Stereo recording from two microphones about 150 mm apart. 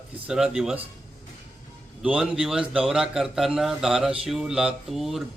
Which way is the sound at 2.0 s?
5° right (ahead or behind).